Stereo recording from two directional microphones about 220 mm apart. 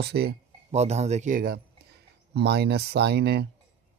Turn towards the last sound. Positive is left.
turn(degrees=-50)  # may be behind; listen again after turning